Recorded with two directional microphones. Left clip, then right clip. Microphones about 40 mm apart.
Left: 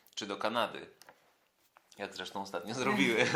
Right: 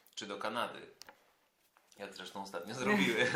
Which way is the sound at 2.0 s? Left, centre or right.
Left.